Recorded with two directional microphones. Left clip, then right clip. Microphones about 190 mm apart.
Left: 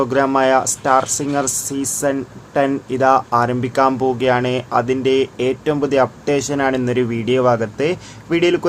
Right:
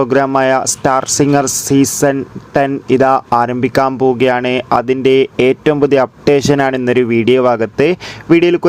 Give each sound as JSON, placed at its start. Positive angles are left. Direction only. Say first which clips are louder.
{"t": 0.0, "sound": "speech", "louder": "right 4 dB", "side_deg": -35}